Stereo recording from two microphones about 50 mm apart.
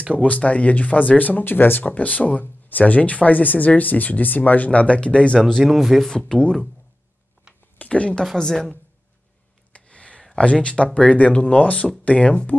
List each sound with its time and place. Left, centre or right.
0.2 s speech: left
1.4 s speech: left
5.4 s speech: centre
6.0 s speech: centre
7.5 s a sound: centre
7.8 s speech: left
8.4 s speech: centre
9.7 s a sound: left
10.3 s speech: left